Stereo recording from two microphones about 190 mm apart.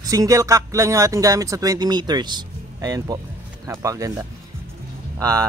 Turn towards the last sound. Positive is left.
turn(degrees=-20)  # may be behind; listen again after turning